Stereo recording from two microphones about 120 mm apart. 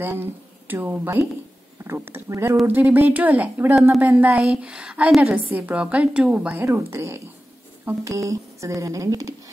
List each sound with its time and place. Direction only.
0.0 s speech: 15° right (ahead or behind)